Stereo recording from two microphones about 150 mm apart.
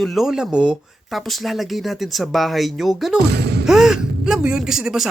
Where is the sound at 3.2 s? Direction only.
90° right.